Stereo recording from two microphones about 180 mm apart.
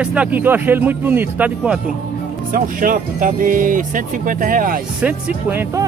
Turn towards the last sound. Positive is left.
turn(degrees=-10)  # may be behind; listen again after turning